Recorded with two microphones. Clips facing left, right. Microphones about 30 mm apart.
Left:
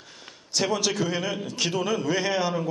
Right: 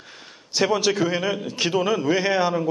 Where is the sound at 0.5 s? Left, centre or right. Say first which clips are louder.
Right 5 dB; centre.